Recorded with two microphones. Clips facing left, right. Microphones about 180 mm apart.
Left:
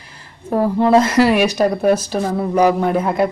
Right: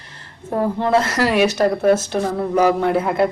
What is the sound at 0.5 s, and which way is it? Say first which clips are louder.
A woman's voice: left 4 dB; 15° left (ahead or behind).